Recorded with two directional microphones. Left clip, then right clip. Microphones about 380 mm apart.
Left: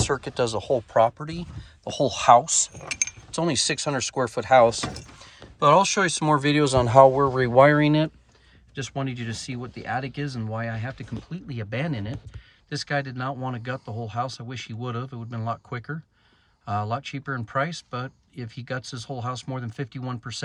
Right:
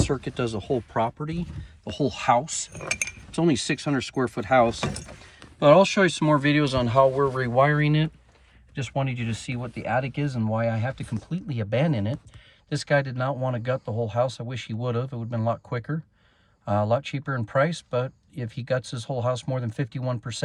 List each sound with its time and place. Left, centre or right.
0.4 s speech: centre
8.7 s speech: centre
11.0 s speech: centre
11.4 s speech: centre